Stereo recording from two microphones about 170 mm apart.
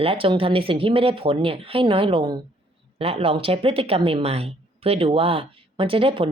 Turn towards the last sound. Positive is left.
turn(degrees=-30)  # may be behind; listen again after turning